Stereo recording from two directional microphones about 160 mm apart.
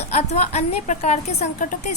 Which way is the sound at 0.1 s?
45° left (ahead or behind).